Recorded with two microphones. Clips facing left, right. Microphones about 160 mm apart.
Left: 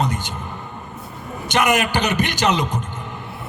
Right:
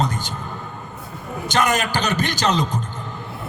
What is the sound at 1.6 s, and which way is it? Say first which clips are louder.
A man's voice: left 2 dB; 15° left (ahead or behind).